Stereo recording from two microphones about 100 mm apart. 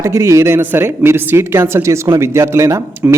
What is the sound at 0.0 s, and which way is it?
Speech, 30° right (ahead or behind).